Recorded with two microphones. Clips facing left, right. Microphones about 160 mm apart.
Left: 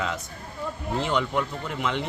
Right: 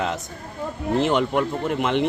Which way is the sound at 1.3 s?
50° right (ahead or behind).